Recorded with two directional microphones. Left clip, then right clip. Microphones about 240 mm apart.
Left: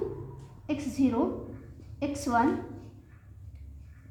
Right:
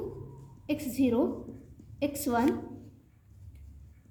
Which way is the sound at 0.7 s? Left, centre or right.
Left.